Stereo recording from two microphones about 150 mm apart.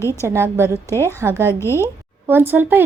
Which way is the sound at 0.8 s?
15° left (ahead or behind).